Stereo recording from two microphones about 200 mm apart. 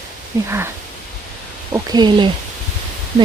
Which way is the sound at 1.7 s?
20° right (ahead or behind).